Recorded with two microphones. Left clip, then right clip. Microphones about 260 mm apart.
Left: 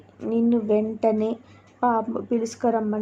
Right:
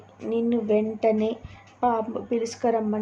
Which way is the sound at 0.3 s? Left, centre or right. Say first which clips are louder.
Left 2 dB; centre.